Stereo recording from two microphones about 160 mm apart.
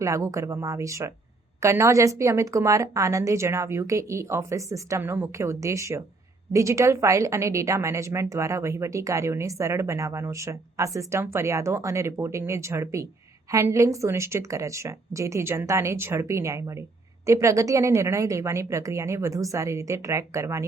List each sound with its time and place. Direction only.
0.0 s a woman's voice: 20° right (ahead or behind)